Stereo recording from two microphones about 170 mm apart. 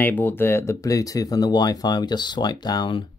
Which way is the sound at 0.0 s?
10° left (ahead or behind).